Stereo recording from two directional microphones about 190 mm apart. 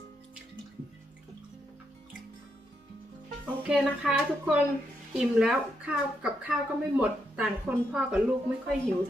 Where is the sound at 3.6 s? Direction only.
10° right (ahead or behind).